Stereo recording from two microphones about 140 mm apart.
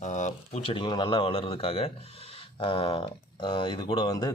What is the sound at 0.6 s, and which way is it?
Speech, 35° left (ahead or behind).